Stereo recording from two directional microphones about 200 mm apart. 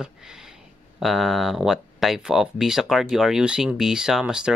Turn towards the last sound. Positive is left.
turn(degrees=-5)  # may be behind; listen again after turning